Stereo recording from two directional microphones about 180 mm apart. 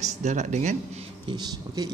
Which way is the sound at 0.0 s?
40° right (ahead or behind).